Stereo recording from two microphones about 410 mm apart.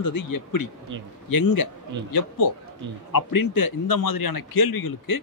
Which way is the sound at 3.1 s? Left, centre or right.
Left.